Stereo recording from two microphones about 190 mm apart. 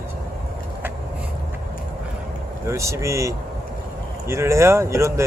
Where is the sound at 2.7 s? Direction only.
15° right (ahead or behind).